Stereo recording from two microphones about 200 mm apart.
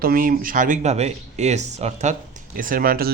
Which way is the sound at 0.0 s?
45° right (ahead or behind).